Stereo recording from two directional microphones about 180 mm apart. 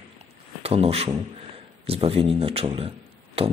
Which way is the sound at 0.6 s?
35° right (ahead or behind).